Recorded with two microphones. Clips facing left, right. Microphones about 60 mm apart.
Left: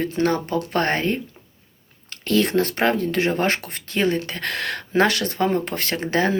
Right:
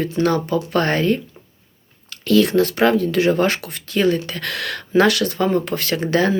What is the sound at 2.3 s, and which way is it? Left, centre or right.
Speech, left.